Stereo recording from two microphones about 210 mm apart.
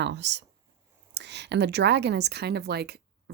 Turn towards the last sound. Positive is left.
turn(degrees=-50)  # may be behind; listen again after turning